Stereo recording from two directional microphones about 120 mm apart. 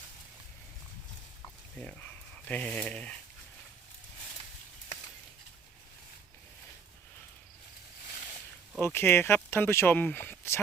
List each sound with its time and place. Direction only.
1.8 s speech: 10° left (ahead or behind)
8.8 s speech: 20° left (ahead or behind)